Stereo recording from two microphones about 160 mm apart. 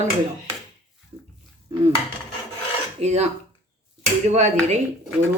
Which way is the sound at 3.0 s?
45° right (ahead or behind).